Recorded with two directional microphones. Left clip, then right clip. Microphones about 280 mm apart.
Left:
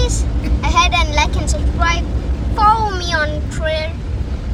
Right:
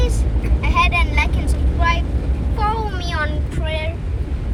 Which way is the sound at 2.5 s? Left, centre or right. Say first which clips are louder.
Left 9 dB; centre.